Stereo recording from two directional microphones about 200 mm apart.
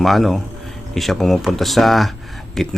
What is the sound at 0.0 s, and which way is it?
Speech, centre (ahead or behind).